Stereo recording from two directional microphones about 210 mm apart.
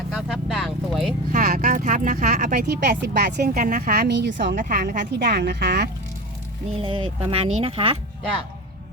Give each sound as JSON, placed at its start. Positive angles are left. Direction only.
{"t": 0.1, "sound": "vehicle", "side_deg": 0}
{"t": 1.3, "sound": "speech", "side_deg": -40}
{"t": 2.6, "sound": "speech", "side_deg": -50}
{"t": 3.5, "sound": "speech", "side_deg": -35}
{"t": 4.5, "sound": "speech", "side_deg": -40}
{"t": 6.8, "sound": "speech", "side_deg": -25}